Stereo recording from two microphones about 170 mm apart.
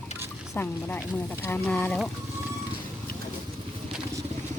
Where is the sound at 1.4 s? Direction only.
15° left (ahead or behind).